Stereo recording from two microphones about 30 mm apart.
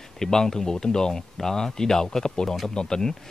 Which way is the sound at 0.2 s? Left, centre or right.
Centre.